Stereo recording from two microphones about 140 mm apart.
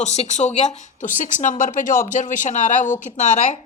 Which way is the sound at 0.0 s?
55° left (ahead or behind).